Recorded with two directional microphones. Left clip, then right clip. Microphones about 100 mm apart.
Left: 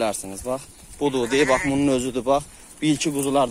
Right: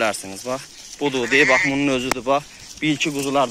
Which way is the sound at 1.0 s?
40° left (ahead or behind).